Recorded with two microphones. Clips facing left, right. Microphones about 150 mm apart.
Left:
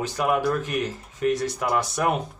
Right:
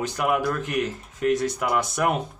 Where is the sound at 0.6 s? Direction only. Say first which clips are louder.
Right 1 dB; 70° right (ahead or behind).